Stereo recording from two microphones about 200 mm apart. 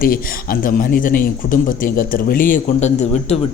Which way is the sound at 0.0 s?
45° left (ahead or behind).